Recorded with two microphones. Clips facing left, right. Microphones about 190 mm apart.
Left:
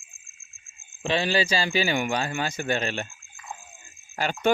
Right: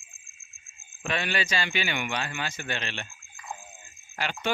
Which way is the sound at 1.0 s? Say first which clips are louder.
Left 6 dB; 30° left (ahead or behind).